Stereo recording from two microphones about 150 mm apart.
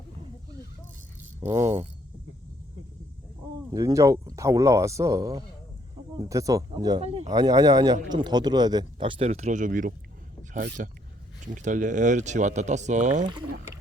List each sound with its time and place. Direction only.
1.4 s speech: 20° right (ahead or behind)
3.7 s speech: 25° right (ahead or behind)
7.0 s speech: 40° right (ahead or behind)
7.3 s speech: 25° right (ahead or behind); by 13.2 s 55° right (ahead or behind)